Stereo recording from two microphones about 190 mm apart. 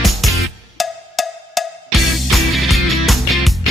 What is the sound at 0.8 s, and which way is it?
Music, centre (ahead or behind).